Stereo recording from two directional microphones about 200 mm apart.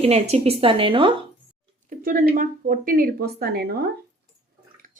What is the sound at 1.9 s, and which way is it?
Speech, 45° right (ahead or behind).